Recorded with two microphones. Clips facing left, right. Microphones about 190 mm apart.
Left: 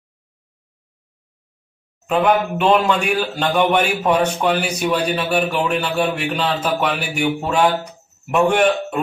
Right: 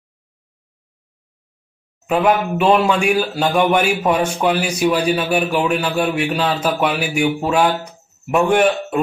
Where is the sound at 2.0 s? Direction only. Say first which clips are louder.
Right 1 dB; 5° right (ahead or behind).